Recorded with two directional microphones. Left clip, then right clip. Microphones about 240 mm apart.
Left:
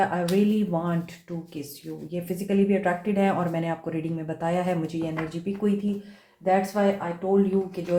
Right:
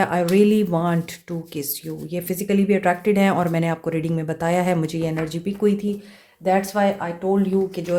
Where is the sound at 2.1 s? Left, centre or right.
Right.